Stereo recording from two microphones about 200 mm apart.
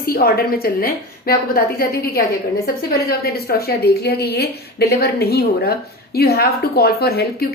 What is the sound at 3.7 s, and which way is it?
A woman's voice, 55° left (ahead or behind).